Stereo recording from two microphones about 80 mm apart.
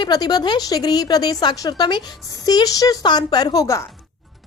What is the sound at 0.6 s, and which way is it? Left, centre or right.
A woman's voice, left.